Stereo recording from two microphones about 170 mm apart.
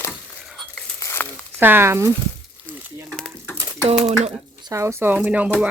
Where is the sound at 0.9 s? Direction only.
15° left (ahead or behind).